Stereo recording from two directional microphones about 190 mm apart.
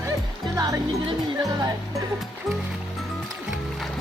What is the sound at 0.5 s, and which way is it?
Speech, 20° right (ahead or behind).